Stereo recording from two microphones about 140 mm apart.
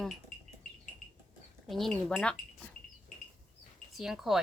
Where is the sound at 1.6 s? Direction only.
Centre (ahead or behind).